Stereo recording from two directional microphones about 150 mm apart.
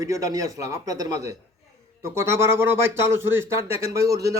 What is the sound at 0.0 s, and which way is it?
Speech, 20° right (ahead or behind).